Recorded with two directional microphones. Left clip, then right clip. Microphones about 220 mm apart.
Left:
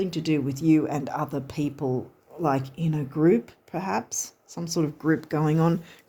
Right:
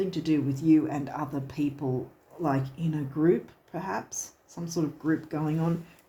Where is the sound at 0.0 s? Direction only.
50° left (ahead or behind).